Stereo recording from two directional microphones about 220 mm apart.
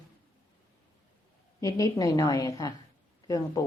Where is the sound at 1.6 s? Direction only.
15° left (ahead or behind).